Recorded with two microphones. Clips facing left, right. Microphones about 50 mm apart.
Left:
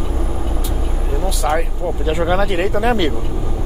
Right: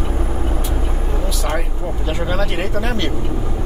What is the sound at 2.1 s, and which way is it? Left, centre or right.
Speech, centre.